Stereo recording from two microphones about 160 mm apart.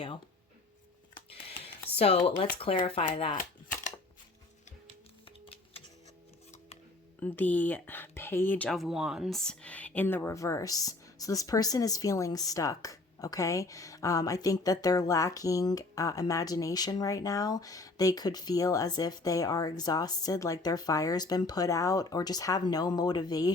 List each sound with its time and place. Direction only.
2.0 s speech: 40° left (ahead or behind)
3.3 s a sound: 55° left (ahead or behind)
7.2 s speech: 10° left (ahead or behind)